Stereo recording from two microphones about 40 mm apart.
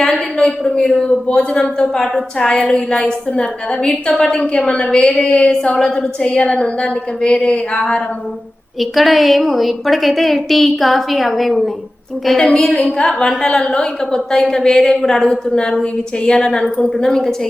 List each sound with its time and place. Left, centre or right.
0.0 s a man's voice: centre
8.8 s a woman's voice: centre
12.4 s a woman's voice: centre